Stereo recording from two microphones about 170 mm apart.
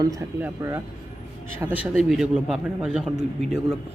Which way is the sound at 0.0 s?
20° right (ahead or behind).